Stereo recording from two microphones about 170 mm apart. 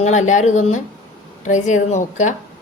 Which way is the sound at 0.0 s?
45° left (ahead or behind).